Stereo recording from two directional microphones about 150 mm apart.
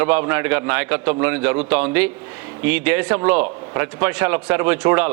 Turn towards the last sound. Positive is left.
turn(degrees=-10)  # may be behind; listen again after turning